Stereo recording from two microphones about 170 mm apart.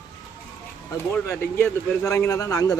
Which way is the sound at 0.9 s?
15° left (ahead or behind).